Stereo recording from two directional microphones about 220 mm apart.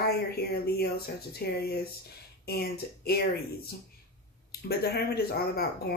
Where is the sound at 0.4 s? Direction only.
45° left (ahead or behind).